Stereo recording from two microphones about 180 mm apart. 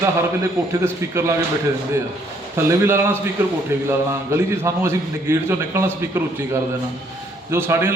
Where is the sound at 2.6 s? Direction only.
15° right (ahead or behind).